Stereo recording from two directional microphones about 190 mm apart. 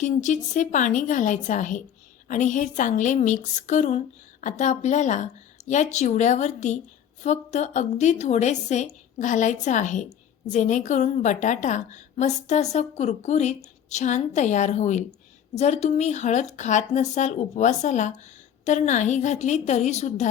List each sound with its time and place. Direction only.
0.0 s a woman's voice: 40° left (ahead or behind)